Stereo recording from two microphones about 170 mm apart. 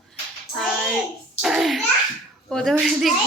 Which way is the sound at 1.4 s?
Centre (ahead or behind).